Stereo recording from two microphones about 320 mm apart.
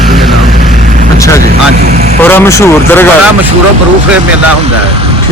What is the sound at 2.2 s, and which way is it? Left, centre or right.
Speech, centre.